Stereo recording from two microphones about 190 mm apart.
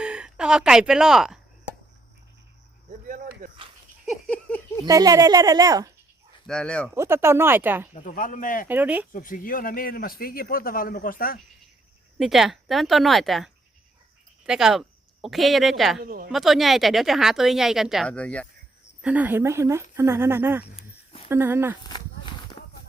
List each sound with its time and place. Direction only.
0.0 s speech: 5° right (ahead or behind)
4.0 s a sound: centre (ahead or behind)
4.9 s speech: 20° right (ahead or behind)
6.5 s speech: 5° left (ahead or behind)
6.9 s speech: 15° right (ahead or behind)
7.9 s a man's voice: 45° left (ahead or behind)
8.6 s speech: 10° right (ahead or behind)
9.1 s a man's voice: 45° left (ahead or behind)
12.2 s speech: centre (ahead or behind)
16.0 s a woman's voice: 50° right (ahead or behind)
16.3 s speech: centre (ahead or behind)
19.0 s speech: 10° right (ahead or behind)
21.8 s a sound: 25° left (ahead or behind)